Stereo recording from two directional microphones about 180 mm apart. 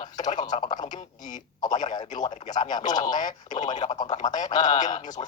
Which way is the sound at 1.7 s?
40° left (ahead or behind).